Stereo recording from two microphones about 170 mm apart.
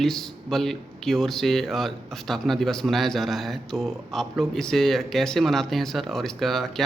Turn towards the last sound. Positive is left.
turn(degrees=0)  # may be behind; listen again after turning